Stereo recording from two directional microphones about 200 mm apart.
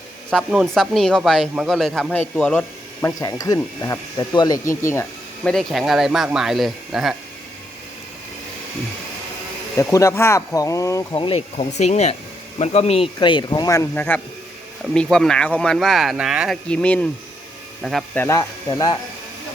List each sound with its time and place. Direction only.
0.3 s speech: centre (ahead or behind)
3.2 s speech: 15° left (ahead or behind)
5.4 s speech: centre (ahead or behind)
9.7 s speech: 15° left (ahead or behind)
11.1 s speech: 25° left (ahead or behind)